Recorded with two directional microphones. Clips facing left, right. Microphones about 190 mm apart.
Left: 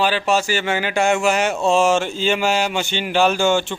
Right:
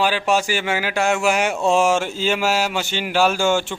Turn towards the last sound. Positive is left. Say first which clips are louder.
# left 1 dB
turn(degrees=-10)  # may be behind; listen again after turning